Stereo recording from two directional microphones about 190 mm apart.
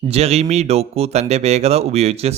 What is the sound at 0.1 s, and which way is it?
Speech, 35° right (ahead or behind).